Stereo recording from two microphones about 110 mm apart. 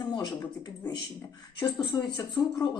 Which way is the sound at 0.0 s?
40° left (ahead or behind).